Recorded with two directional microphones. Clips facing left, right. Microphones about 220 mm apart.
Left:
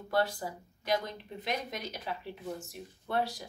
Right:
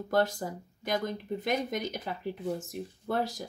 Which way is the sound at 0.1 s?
45° right (ahead or behind).